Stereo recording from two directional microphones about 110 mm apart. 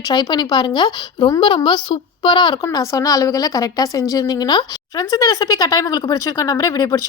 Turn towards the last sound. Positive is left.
turn(degrees=35)  # may be behind; listen again after turning